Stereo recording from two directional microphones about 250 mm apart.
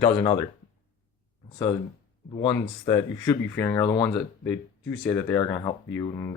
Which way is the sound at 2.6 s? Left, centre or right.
Centre.